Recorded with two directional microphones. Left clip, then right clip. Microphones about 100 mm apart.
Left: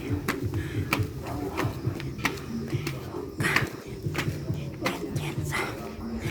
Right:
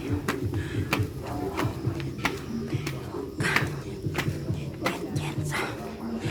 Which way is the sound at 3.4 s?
20° left (ahead or behind).